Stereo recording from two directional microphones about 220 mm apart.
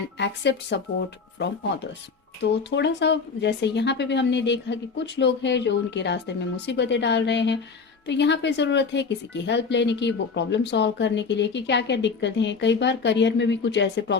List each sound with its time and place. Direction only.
0.2 s a woman's voice: 50° left (ahead or behind)
2.4 s a woman's voice: 50° left (ahead or behind)